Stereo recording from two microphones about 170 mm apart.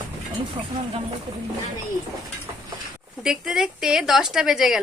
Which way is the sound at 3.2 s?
5° right (ahead or behind).